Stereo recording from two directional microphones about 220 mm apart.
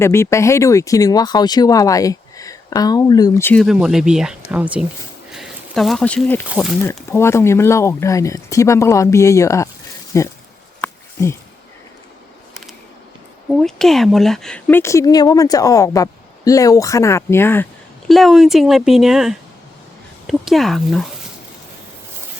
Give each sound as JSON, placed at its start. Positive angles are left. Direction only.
{"t": 0.0, "sound": "speech", "side_deg": 10}
{"t": 5.3, "sound": "a sound", "side_deg": 0}
{"t": 6.5, "sound": "speech", "side_deg": 0}
{"t": 6.8, "sound": "speech", "side_deg": 10}
{"t": 10.8, "sound": "a sound", "side_deg": 10}
{"t": 13.5, "sound": "speech", "side_deg": 0}
{"t": 18.1, "sound": "speech", "side_deg": 0}